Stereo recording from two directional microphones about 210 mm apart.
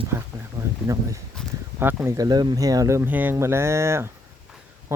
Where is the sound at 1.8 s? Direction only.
10° right (ahead or behind).